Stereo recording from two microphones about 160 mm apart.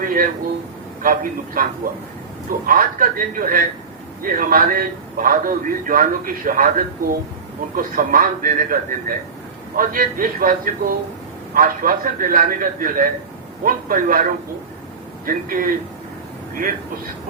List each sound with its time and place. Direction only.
0.0 s a man's voice: 60° right (ahead or behind)
2.6 s a man's voice: 60° right (ahead or behind)